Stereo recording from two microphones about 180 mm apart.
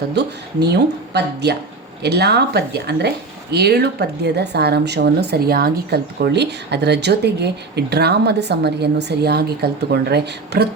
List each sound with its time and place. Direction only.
0.2 s speech: 65° right (ahead or behind)